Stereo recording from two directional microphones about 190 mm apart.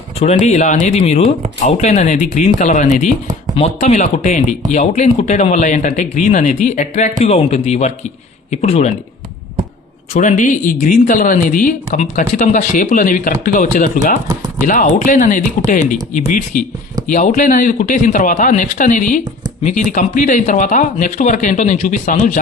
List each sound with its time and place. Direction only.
0.2 s speech: 35° left (ahead or behind)
10.2 s speech: 40° left (ahead or behind)